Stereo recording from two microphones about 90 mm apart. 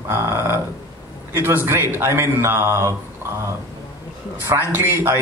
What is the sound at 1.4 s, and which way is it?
Speech, 25° right (ahead or behind).